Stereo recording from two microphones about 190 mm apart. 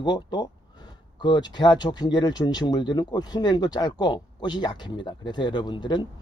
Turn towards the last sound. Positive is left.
turn(degrees=25)  # may be behind; listen again after turning